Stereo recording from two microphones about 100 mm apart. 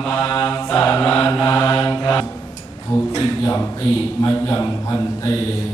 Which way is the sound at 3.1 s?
35° left (ahead or behind).